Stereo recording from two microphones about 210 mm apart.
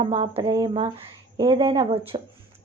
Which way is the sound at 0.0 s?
25° right (ahead or behind).